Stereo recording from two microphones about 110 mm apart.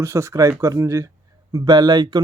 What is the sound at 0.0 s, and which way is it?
Speech, 25° right (ahead or behind).